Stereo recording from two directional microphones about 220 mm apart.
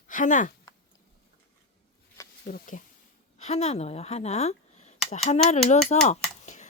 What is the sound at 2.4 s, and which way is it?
A woman's voice, 35° left (ahead or behind).